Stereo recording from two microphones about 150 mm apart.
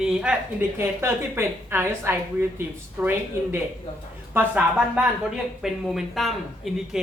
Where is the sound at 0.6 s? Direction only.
15° right (ahead or behind).